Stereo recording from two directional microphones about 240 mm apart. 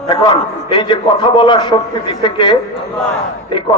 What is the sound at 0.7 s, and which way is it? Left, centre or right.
A man's voice, centre.